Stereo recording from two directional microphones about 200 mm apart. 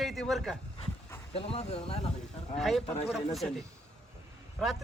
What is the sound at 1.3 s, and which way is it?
Speech, 30° left (ahead or behind).